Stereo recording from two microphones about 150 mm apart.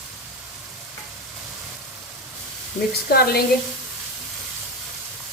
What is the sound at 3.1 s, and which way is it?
Speech, 90° left.